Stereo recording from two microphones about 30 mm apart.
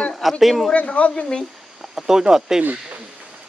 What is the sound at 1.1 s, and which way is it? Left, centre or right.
Speech, left.